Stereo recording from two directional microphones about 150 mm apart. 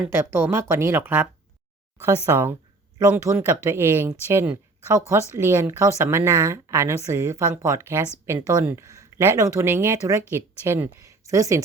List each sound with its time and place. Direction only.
0.1 s a woman's voice: 15° right (ahead or behind)